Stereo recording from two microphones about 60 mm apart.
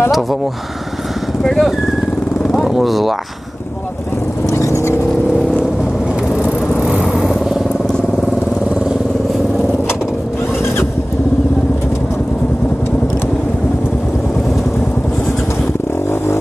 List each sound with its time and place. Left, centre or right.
1.4 s speech: centre
4.5 s vehicle: left
7.1 s vehicle: centre